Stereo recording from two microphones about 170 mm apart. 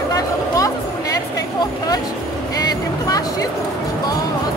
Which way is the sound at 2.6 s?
20° left (ahead or behind).